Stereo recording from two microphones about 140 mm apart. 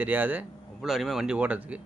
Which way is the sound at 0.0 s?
10° right (ahead or behind).